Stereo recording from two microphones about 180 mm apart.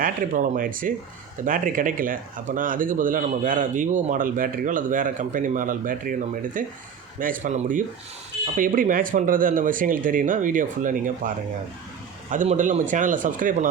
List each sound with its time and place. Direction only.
0.0 s speech: 50° right (ahead or behind)
12.3 s speech: 45° right (ahead or behind)